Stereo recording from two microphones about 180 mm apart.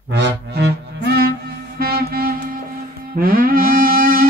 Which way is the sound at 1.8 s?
55° right (ahead or behind).